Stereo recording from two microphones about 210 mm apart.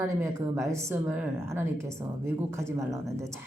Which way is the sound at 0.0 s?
15° right (ahead or behind).